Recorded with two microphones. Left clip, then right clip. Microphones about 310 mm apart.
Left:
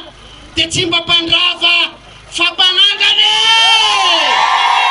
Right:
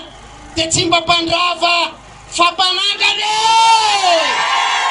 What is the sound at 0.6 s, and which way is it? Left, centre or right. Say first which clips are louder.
Speech: left 1 dB; centre.